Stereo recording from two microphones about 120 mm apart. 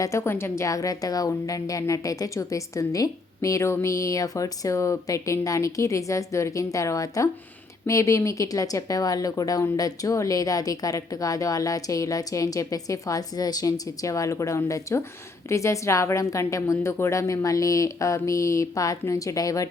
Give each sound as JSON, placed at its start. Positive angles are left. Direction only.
{"t": 0.0, "sound": "a woman's voice", "side_deg": 25}